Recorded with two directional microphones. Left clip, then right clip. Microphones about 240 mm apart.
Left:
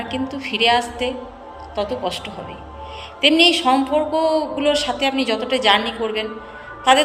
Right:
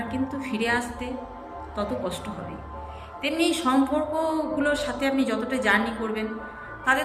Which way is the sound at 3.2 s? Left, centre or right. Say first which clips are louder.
Left 11 dB; centre.